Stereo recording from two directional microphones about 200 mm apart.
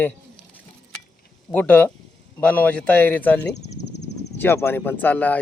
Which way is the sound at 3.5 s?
35° left (ahead or behind).